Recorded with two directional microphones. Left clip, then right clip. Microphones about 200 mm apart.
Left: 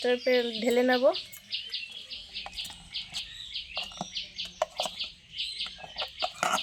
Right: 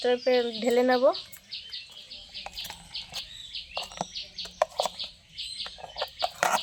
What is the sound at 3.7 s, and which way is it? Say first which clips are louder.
Bird: right 4 dB; 20° right (ahead or behind).